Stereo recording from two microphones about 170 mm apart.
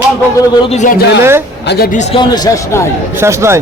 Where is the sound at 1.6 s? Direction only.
65° left (ahead or behind).